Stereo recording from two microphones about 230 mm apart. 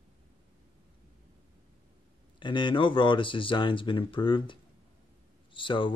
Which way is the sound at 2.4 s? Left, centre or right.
Left.